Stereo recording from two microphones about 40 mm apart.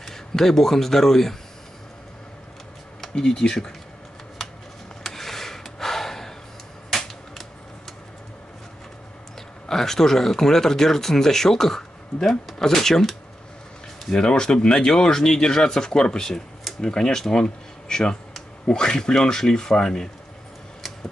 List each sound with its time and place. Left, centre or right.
0.0 s speech: centre
3.2 s speech: centre
5.0 s a sound: centre
9.7 s speech: centre
14.1 s speech: centre